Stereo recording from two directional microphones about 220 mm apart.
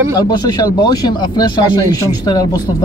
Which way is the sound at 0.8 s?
20° left (ahead or behind).